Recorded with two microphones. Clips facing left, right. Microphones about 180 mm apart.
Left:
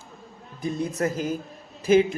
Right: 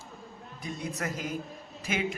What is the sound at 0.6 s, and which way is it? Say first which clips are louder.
A man's voice: left 9 dB; 30° left (ahead or behind).